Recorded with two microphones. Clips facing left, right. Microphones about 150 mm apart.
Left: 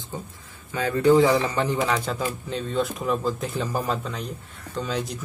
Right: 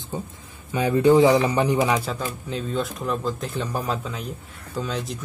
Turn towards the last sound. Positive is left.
turn(degrees=0)  # may be behind; listen again after turning